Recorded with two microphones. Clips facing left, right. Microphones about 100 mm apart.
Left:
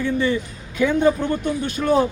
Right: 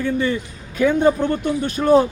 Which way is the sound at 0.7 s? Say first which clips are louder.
Right 2 dB; 40° right (ahead or behind).